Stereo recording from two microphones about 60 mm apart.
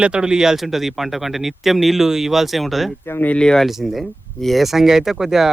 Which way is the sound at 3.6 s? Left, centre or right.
Centre.